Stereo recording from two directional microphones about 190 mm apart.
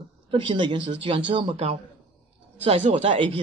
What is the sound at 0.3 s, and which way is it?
Speech, 25° right (ahead or behind).